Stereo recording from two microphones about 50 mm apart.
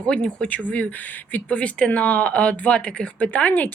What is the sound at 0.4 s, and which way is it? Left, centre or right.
Speech, left.